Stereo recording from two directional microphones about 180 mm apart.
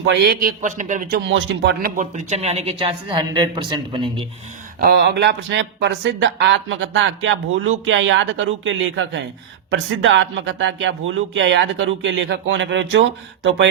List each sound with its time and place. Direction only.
0.1 s a man's voice: 65° right (ahead or behind); by 1.2 s 45° right (ahead or behind)
1.2 s a man's voice: 75° right (ahead or behind)
2.0 s speech: 40° right (ahead or behind); by 4.3 s 25° right (ahead or behind)
4.8 s speech: 60° right (ahead or behind); by 13.7 s 85° right